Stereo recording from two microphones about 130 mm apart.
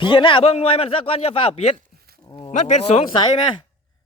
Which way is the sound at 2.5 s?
60° left (ahead or behind).